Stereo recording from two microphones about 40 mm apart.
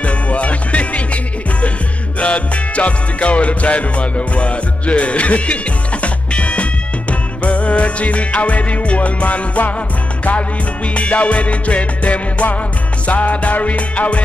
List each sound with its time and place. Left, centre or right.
0.0 s music: left
11.0 s music: left